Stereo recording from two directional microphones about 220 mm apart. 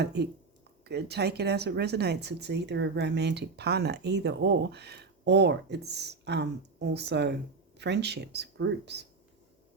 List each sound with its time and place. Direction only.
0.0 s speech: 50° right (ahead or behind)